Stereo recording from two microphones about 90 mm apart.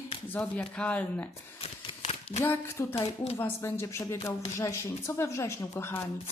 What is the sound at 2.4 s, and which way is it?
A woman's voice, 25° left (ahead or behind).